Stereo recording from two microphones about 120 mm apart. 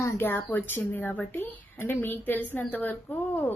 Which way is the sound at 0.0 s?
15° left (ahead or behind).